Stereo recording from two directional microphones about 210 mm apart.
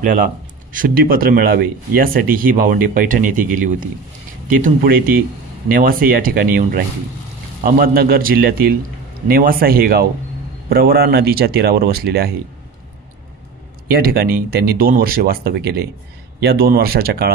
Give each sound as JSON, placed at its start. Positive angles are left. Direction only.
{"t": 0.0, "sound": "speech", "side_deg": -40}
{"t": 13.8, "sound": "speech", "side_deg": -45}